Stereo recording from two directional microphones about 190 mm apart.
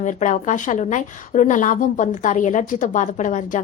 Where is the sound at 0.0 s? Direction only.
40° left (ahead or behind).